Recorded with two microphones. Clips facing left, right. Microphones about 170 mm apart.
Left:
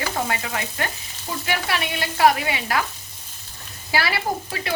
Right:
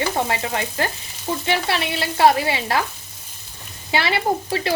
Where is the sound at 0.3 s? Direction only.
30° right (ahead or behind).